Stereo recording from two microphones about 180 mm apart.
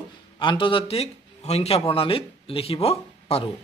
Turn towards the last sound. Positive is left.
turn(degrees=35)  # may be behind; listen again after turning